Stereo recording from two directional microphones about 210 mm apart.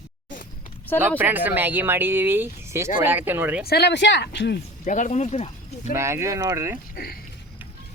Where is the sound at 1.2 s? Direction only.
10° right (ahead or behind).